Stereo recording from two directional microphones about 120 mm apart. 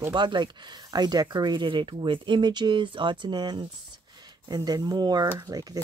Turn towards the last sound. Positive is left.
turn(degrees=-30)  # may be behind; listen again after turning